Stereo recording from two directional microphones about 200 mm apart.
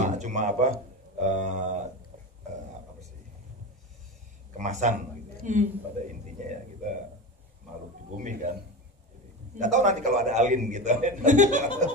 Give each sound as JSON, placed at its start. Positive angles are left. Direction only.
{"t": 0.0, "sound": "a sound", "side_deg": -35}
{"t": 1.1, "sound": "a man's voice", "side_deg": -40}
{"t": 4.6, "sound": "a man's voice", "side_deg": -35}
{"t": 8.2, "sound": "a man's voice", "side_deg": -40}
{"t": 9.6, "sound": "a man's voice", "side_deg": -35}